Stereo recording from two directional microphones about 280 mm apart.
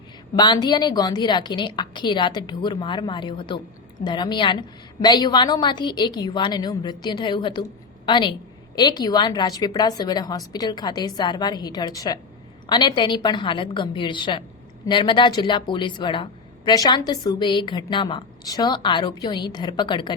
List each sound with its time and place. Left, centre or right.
0.3 s a woman's voice: centre